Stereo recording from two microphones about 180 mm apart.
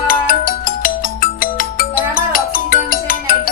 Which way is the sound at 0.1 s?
50° left (ahead or behind).